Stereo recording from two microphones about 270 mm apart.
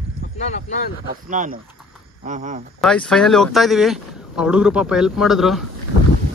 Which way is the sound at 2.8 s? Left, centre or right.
Centre.